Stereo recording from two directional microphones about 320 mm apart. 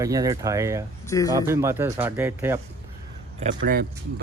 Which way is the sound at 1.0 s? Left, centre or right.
Centre.